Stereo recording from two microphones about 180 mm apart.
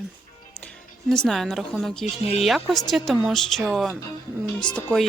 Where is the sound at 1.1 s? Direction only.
5° left (ahead or behind).